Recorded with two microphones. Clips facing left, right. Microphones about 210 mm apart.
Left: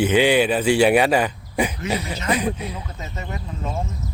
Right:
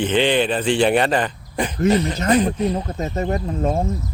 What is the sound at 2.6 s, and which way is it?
Speech, 45° right (ahead or behind).